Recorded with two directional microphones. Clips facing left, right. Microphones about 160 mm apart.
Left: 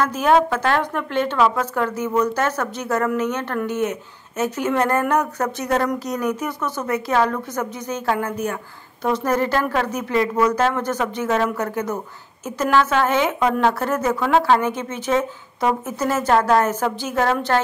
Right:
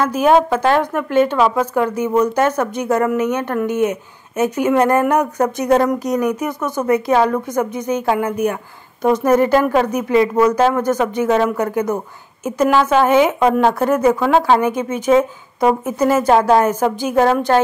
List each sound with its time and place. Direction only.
0.0 s speech: 10° right (ahead or behind)